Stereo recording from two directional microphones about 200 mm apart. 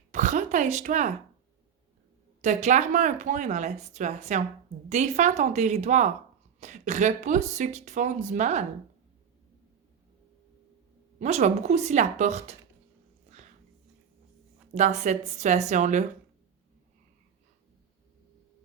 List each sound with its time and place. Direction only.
0.1 s speech: 35° right (ahead or behind)
2.4 s speech: 35° right (ahead or behind)
11.2 s speech: 35° right (ahead or behind)
14.8 s speech: 35° right (ahead or behind)